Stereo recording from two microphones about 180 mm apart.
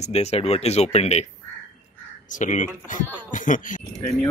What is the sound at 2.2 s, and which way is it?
Speech, 45° left (ahead or behind).